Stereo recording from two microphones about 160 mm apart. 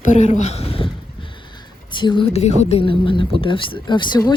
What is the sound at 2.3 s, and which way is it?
Speech, 40° left (ahead or behind).